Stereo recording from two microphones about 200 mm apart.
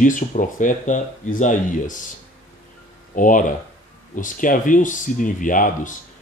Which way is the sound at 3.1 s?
40° left (ahead or behind).